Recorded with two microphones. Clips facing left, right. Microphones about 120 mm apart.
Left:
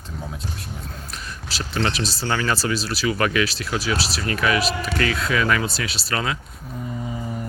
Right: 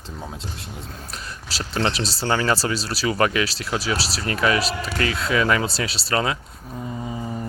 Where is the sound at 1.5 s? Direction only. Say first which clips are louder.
Right 1 dB; 30° right (ahead or behind).